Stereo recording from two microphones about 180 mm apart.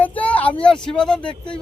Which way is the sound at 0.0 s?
10° left (ahead or behind).